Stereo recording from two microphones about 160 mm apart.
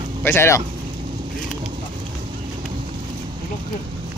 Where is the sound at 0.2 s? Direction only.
15° left (ahead or behind).